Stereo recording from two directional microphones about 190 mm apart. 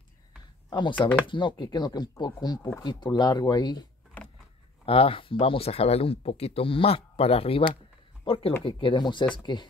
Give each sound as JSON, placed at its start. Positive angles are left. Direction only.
{"t": 0.7, "sound": "a sound", "side_deg": 25}
{"t": 1.2, "sound": "speech", "side_deg": 25}
{"t": 4.8, "sound": "speech", "side_deg": 30}